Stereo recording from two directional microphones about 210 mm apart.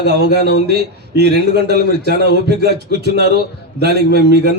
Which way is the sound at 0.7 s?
50° right (ahead or behind).